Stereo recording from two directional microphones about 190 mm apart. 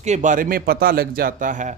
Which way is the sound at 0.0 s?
40° right (ahead or behind).